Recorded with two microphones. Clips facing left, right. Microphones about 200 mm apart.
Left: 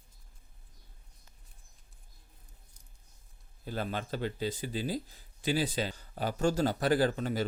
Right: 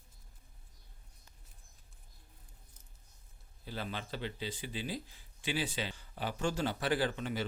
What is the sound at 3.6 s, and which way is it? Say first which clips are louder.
A man's voice: left 6 dB; 45° left (ahead or behind).